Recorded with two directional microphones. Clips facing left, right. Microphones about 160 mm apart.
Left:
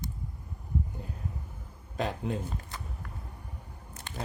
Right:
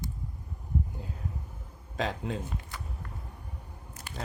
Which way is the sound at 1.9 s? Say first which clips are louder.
Left 1 dB; centre (ahead or behind).